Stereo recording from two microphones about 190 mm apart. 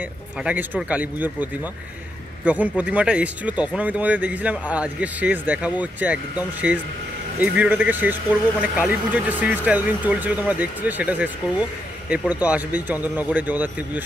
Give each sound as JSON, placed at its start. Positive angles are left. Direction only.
{"t": 0.0, "sound": "speech", "side_deg": -10}